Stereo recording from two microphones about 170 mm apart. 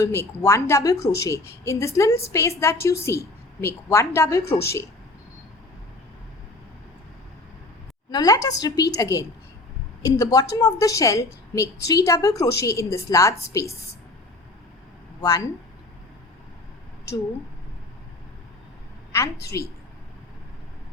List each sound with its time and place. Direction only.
0.0 s a woman's voice: 15° left (ahead or behind)
8.1 s a woman's voice: 20° left (ahead or behind)
15.2 s a woman's voice: 20° left (ahead or behind)
19.5 s a woman's voice: 20° left (ahead or behind)